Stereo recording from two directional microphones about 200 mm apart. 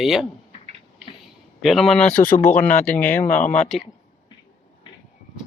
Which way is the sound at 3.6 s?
Centre (ahead or behind).